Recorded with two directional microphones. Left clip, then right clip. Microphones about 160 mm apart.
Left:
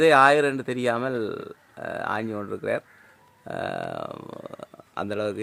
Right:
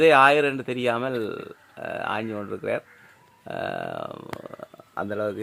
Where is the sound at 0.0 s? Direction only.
15° left (ahead or behind).